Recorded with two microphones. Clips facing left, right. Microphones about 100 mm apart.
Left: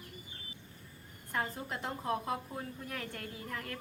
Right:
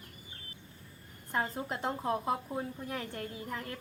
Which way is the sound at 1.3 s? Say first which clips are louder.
Right 3 dB; 25° right (ahead or behind).